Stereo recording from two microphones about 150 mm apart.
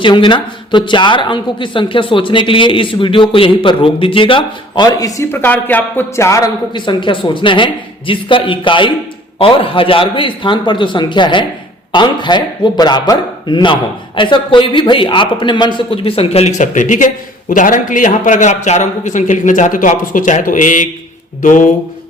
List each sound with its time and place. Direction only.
0.0 s a woman's voice: 30° left (ahead or behind); by 21.7 s 60° left (ahead or behind)